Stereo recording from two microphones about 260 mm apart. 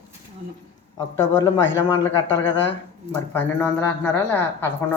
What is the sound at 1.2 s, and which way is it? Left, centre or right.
Speech, centre.